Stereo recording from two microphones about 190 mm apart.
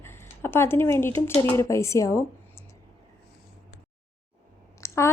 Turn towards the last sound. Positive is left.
turn(degrees=15)  # may be behind; listen again after turning